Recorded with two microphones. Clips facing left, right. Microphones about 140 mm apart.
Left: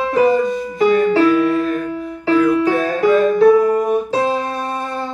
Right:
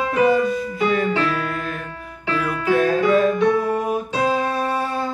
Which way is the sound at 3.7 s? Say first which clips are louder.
Left 5 dB; 5° right (ahead or behind).